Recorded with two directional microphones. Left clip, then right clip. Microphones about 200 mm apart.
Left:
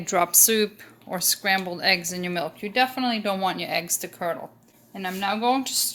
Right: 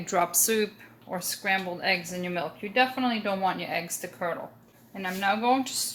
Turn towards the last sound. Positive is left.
turn(degrees=45)  # may be behind; listen again after turning